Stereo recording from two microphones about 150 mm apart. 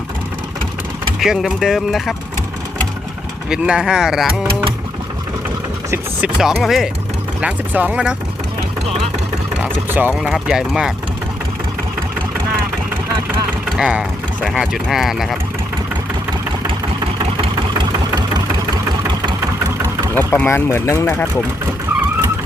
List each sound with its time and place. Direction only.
1.2 s speech: centre (ahead or behind)
3.5 s speech: 5° right (ahead or behind)
6.2 s speech: 5° right (ahead or behind)
9.9 s speech: 10° right (ahead or behind)
13.7 s vehicle: 5° right (ahead or behind)
14.5 s speech: 5° right (ahead or behind)
18.1 s engine: 25° right (ahead or behind)
20.1 s speech: 10° left (ahead or behind)